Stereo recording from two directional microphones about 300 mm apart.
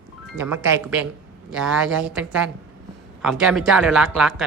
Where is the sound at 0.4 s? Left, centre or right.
Centre.